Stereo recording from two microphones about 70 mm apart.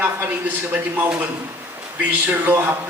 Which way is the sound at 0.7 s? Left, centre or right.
Right.